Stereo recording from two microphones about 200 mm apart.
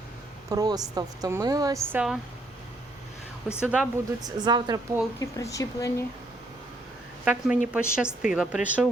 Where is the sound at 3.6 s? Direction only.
5° right (ahead or behind).